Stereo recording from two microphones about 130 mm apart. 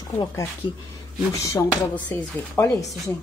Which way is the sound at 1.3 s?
25° left (ahead or behind).